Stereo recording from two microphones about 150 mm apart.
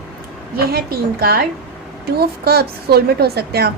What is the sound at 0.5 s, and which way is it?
A woman's voice, 90° right.